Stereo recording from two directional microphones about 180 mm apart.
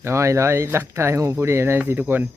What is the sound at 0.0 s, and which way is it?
Speech, 15° right (ahead or behind).